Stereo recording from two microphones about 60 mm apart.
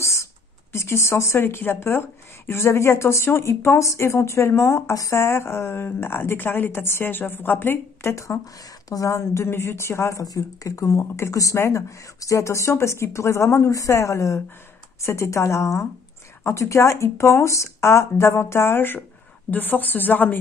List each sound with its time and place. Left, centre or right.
0.0 s a sound: left
0.7 s a woman's voice: left
8.8 s a woman's voice: left
9.1 s speech: left
10.2 s a woman's voice: left